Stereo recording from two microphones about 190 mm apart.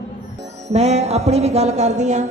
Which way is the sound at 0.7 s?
35° right (ahead or behind).